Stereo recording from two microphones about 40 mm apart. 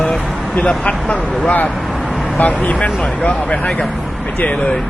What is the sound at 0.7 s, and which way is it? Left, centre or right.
Speech, left.